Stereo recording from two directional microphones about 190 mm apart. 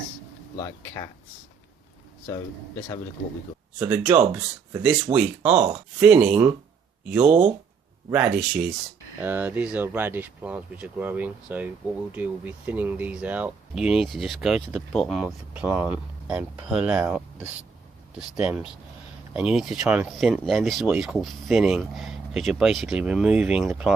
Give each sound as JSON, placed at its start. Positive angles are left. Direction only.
{"t": 0.6, "sound": "speech", "side_deg": 15}
{"t": 3.8, "sound": "speech", "side_deg": -10}